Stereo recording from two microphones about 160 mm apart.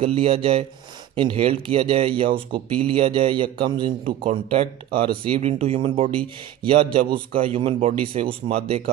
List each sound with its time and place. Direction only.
0.0 s speech: 35° right (ahead or behind)